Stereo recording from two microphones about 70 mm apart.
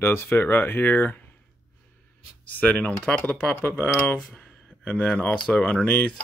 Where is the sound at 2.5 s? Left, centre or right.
Left.